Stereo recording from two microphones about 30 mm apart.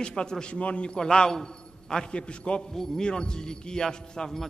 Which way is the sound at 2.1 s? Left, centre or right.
Left.